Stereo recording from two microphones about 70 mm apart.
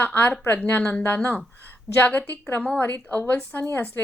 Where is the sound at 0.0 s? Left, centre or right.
Left.